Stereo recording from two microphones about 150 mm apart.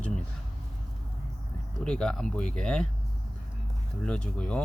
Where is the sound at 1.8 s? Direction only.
5° left (ahead or behind).